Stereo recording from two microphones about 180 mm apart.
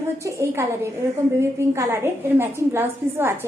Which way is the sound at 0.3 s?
15° right (ahead or behind).